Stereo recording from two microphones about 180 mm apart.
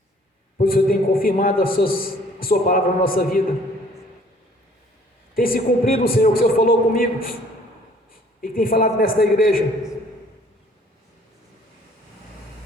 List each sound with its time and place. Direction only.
0.6 s a man's voice: 55° left (ahead or behind)
5.3 s a man's voice: 55° left (ahead or behind)
8.4 s a man's voice: 55° left (ahead or behind)